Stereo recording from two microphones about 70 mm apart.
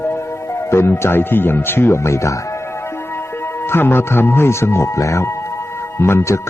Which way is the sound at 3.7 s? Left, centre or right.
Left.